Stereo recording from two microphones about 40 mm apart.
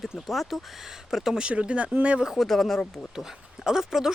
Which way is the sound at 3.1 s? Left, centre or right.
Centre.